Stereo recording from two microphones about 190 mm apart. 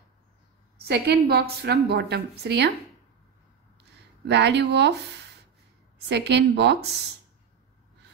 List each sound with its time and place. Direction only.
0.8 s a woman's voice: 60° right (ahead or behind)
4.3 s a woman's voice: 65° right (ahead or behind)
6.0 s a woman's voice: 65° right (ahead or behind)